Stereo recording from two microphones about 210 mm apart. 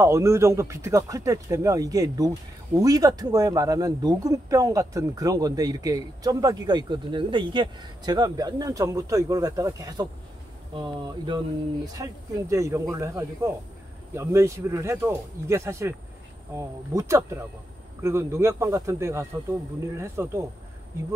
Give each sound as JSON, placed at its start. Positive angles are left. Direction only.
{"t": 0.0, "sound": "speech", "side_deg": -15}